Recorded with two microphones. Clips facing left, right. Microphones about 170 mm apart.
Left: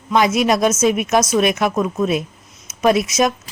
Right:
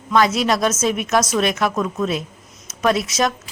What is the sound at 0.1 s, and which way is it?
A woman's voice, 15° left (ahead or behind).